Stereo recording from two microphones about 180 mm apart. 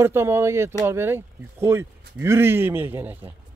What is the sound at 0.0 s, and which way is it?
Speech, 15° right (ahead or behind).